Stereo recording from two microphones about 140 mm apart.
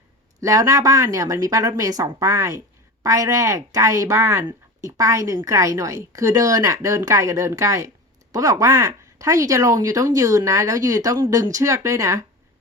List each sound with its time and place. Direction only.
0.4 s speech: 25° right (ahead or behind)